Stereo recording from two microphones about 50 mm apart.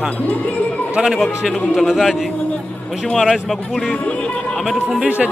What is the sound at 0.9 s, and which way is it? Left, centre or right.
Speech, centre.